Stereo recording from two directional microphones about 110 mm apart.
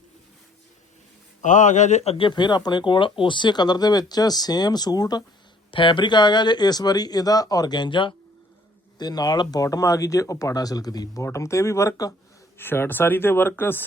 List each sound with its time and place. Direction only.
1.4 s speech: 90° left
2.1 s speech: 45° left (ahead or behind)
5.7 s speech: 50° left (ahead or behind); by 12.1 s 30° left (ahead or behind)
12.5 s speech: 20° left (ahead or behind)